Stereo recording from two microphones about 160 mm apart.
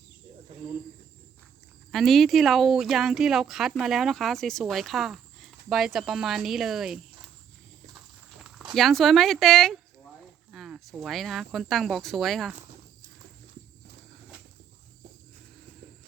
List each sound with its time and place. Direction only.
0.5 s cricket: 35° right (ahead or behind)
1.9 s speech: centre (ahead or behind)
8.7 s speech: centre (ahead or behind)